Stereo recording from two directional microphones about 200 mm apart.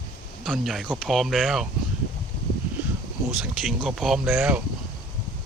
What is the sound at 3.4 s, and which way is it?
Speech, centre (ahead or behind).